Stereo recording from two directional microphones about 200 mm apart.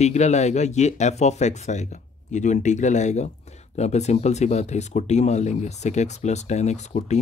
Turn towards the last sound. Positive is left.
turn(degrees=35)  # may be behind; listen again after turning